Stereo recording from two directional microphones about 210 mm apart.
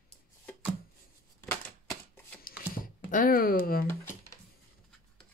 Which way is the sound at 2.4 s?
45° left (ahead or behind).